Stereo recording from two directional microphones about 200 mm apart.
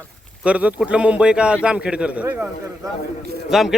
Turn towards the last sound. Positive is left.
turn(degrees=0)  # may be behind; listen again after turning